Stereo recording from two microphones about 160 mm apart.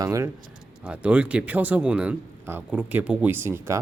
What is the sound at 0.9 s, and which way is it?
Speech, 5° right (ahead or behind).